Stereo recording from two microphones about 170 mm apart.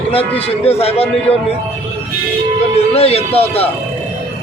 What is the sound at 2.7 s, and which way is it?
Speech, 35° left (ahead or behind).